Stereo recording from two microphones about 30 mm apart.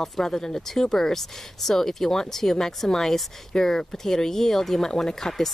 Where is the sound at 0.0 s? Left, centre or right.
Centre.